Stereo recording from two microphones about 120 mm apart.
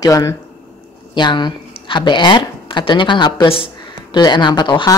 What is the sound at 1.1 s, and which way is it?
Speech, 40° left (ahead or behind).